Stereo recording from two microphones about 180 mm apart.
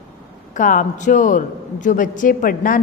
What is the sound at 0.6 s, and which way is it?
A woman's voice, 45° left (ahead or behind).